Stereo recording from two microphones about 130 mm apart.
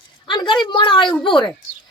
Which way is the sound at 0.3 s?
35° left (ahead or behind).